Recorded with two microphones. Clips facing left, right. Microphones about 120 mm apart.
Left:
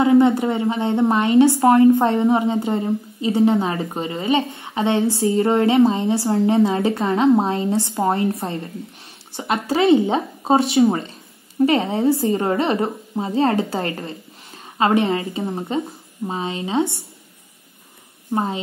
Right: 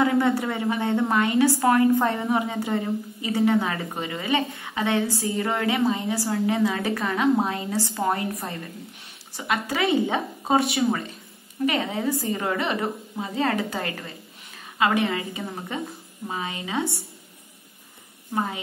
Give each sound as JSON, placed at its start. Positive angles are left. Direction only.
{"t": 0.0, "sound": "a woman's voice", "side_deg": 20}
{"t": 18.3, "sound": "a woman's voice", "side_deg": 30}